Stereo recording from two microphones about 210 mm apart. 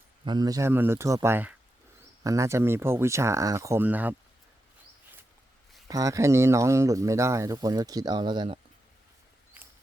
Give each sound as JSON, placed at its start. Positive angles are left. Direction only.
{"t": 0.3, "sound": "speech", "side_deg": -20}
{"t": 5.9, "sound": "speech", "side_deg": -15}
{"t": 9.6, "sound": "a sound", "side_deg": -5}